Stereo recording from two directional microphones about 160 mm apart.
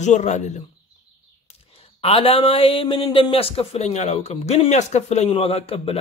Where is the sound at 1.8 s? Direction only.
40° left (ahead or behind).